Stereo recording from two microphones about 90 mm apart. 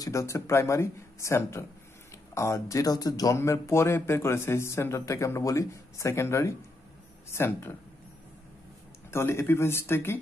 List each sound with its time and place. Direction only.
0.0 s speech: 35° left (ahead or behind)
3.3 s speech: 30° left (ahead or behind)
9.1 s speech: 30° left (ahead or behind)